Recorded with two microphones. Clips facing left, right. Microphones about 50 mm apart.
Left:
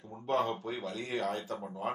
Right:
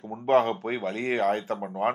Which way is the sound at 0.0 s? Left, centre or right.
Right.